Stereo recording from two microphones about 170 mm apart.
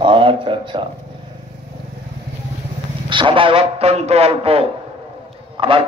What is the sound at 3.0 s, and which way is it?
A man's voice, 30° right (ahead or behind).